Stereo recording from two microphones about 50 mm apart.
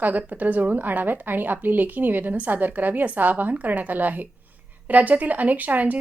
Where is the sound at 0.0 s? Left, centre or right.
Right.